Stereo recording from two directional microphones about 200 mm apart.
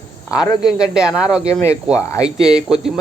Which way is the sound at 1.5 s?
15° left (ahead or behind).